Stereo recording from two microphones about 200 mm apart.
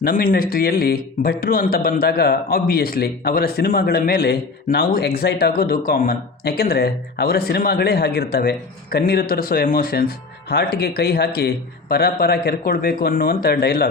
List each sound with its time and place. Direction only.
0.0 s a man's voice: 45° left (ahead or behind)